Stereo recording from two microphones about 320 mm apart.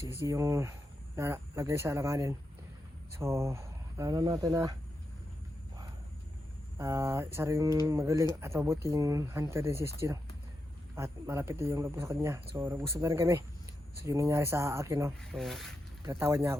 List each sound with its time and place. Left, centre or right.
0.0 s speech: centre
6.7 s speech: centre